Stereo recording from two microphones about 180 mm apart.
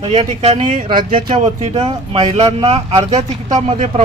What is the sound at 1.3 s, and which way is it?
Speech, 30° right (ahead or behind).